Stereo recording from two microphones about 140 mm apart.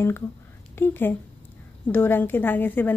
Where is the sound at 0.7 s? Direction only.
15° left (ahead or behind).